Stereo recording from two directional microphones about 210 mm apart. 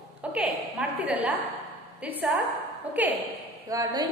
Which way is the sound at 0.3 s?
5° right (ahead or behind).